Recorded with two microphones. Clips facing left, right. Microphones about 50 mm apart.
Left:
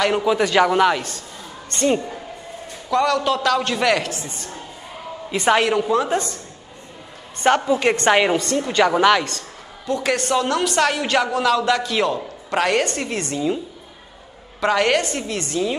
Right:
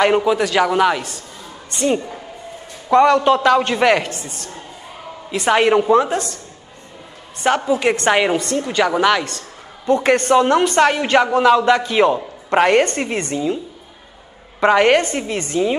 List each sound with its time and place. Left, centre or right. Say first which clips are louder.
0.0 s a man's voice: right 4 dB; centre
0.3 s a man's voice: even; centre
2.9 s a man's voice: right 6 dB; right
5.6 s a man's voice: right 5 dB; centre
6.1 s a woman's voice: even; centre
7.4 s a man's voice: even; centre
9.8 s a man's voice: right 6 dB; right
14.6 s a man's voice: right 5 dB; centre